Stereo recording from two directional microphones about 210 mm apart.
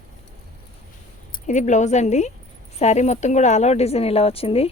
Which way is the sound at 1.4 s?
35° left (ahead or behind).